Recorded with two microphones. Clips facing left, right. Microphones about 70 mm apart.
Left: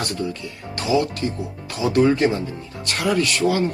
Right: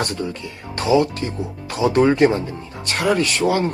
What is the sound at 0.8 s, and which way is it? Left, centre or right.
Speech, right.